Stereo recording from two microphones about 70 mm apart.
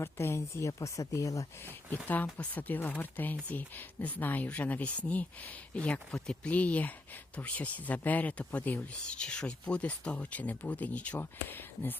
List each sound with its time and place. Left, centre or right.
0.0 s speech: left
2.0 s speech: left